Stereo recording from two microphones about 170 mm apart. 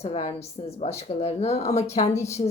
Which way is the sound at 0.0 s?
40° left (ahead or behind).